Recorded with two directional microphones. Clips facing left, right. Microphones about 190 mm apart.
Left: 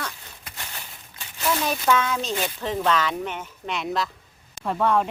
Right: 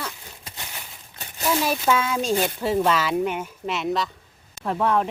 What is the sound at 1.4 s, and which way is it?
Speech, 10° right (ahead or behind).